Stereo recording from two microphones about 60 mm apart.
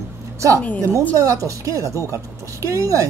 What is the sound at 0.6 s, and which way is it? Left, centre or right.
Speech, left.